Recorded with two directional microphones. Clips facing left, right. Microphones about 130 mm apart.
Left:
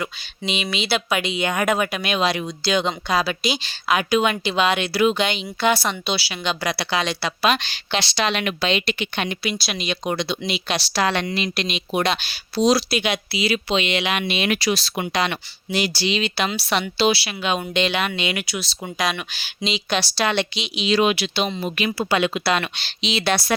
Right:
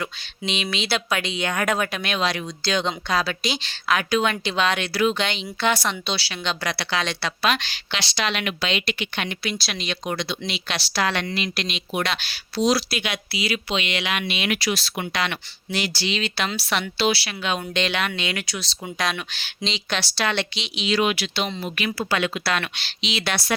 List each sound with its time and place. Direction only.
0.0 s speech: 5° left (ahead or behind)
20.8 s speech: 25° left (ahead or behind)